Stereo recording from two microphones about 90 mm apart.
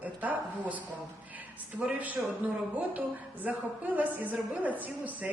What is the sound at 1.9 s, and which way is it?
A woman's voice, 20° right (ahead or behind).